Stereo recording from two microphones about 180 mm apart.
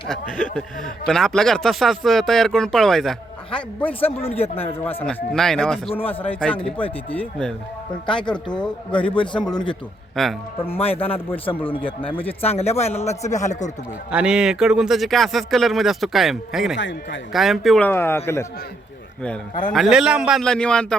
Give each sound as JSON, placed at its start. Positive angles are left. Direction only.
{"t": 0.1, "sound": "speech", "side_deg": 5}
{"t": 4.0, "sound": "a man's voice", "side_deg": 35}
{"t": 5.0, "sound": "speech", "side_deg": 5}
{"t": 5.9, "sound": "a man's voice", "side_deg": 30}
{"t": 7.1, "sound": "speech", "side_deg": 5}
{"t": 8.0, "sound": "a man's voice", "side_deg": 25}
{"t": 10.2, "sound": "speech", "side_deg": 0}
{"t": 10.8, "sound": "a man's voice", "side_deg": 35}
{"t": 14.1, "sound": "speech", "side_deg": -5}
{"t": 16.7, "sound": "a man's voice", "side_deg": 90}
{"t": 17.3, "sound": "speech", "side_deg": 0}
{"t": 17.8, "sound": "speech", "side_deg": 10}
{"t": 19.7, "sound": "speech", "side_deg": 0}